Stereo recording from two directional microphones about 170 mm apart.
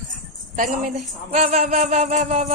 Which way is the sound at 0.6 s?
50° right (ahead or behind).